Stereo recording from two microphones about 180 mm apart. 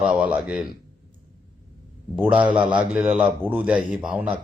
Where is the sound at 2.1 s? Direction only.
5° right (ahead or behind).